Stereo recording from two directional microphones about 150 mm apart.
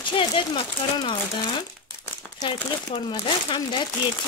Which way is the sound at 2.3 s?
30° left (ahead or behind).